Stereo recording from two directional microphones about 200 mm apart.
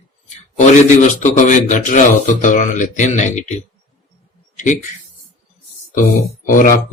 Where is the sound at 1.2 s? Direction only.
40° left (ahead or behind).